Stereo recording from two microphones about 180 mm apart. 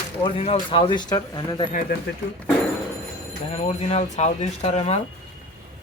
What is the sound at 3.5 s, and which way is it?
Speech, 35° left (ahead or behind).